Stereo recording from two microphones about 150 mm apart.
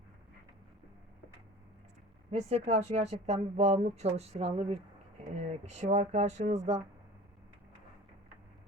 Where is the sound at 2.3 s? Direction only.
45° right (ahead or behind).